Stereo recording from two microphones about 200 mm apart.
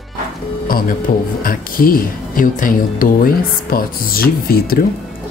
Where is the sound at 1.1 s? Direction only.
40° left (ahead or behind).